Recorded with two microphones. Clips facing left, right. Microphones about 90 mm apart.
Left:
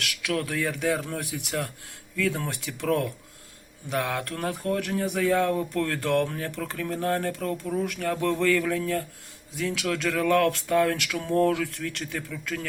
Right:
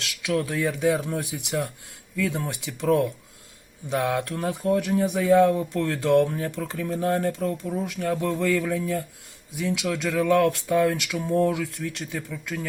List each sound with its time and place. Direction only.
0.0 s speech: 20° right (ahead or behind)